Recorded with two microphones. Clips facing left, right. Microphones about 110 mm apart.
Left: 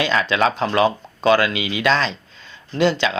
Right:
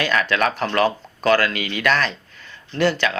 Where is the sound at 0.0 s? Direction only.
20° left (ahead or behind).